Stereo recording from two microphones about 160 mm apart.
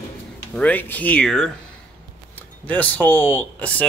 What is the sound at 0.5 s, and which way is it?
Speech, 10° left (ahead or behind).